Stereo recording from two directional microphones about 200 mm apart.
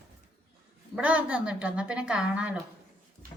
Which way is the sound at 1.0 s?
5° right (ahead or behind).